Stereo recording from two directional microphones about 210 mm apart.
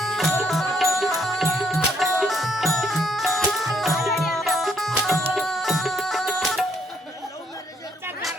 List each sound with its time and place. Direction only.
0.0 s music: centre (ahead or behind)